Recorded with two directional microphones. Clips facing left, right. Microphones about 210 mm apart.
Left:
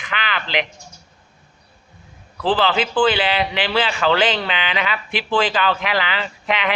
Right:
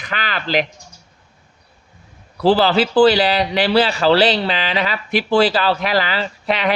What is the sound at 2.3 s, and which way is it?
Speech, 40° right (ahead or behind).